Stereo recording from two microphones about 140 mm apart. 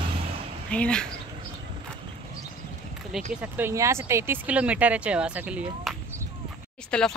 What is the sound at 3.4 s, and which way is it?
Speech, 15° right (ahead or behind).